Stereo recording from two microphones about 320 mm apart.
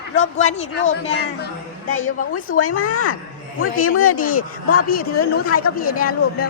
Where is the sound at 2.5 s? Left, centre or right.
Left.